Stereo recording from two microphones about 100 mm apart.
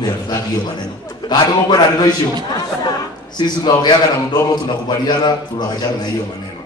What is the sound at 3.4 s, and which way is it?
A man's voice, 45° left (ahead or behind).